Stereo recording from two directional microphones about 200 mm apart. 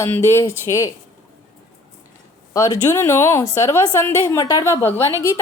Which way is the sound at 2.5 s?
15° left (ahead or behind).